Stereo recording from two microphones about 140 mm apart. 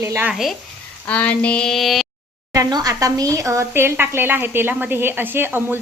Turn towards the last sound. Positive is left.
turn(degrees=-15)  # may be behind; listen again after turning